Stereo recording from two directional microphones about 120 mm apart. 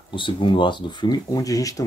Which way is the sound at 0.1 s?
45° left (ahead or behind).